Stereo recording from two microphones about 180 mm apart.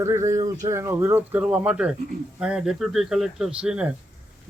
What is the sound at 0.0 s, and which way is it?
Speech, 15° right (ahead or behind).